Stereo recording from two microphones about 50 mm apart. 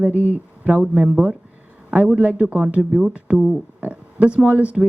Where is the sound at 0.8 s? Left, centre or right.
Centre.